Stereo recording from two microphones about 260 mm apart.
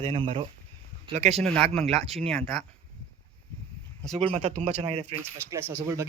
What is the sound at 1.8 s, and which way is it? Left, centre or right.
Speech, right.